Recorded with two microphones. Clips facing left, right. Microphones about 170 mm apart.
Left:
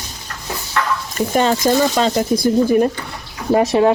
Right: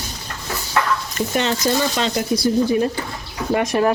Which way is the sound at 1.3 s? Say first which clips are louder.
Left 5 dB; 45° left (ahead or behind).